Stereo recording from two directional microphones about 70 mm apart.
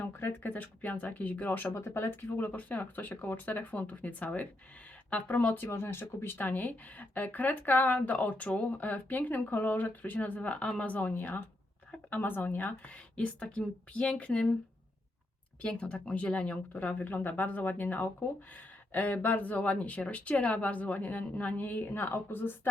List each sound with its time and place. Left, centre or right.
0.0 s speech: left
5.6 s speech: left; by 14.4 s centre
15.6 s speech: centre